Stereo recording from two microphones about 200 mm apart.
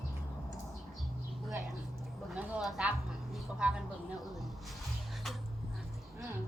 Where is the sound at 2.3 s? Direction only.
5° right (ahead or behind).